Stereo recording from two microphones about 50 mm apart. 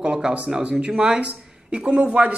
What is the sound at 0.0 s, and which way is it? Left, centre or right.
A man's voice, right.